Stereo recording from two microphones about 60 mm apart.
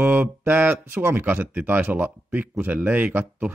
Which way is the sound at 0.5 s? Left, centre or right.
Right.